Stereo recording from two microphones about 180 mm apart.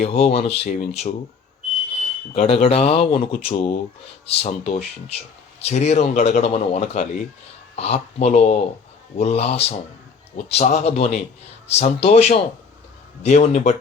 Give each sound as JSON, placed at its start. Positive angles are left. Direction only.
{"t": 0.0, "sound": "a man's voice", "side_deg": 35}
{"t": 2.3, "sound": "a man's voice", "side_deg": 35}